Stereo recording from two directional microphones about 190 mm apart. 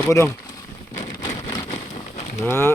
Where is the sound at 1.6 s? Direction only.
35° left (ahead or behind).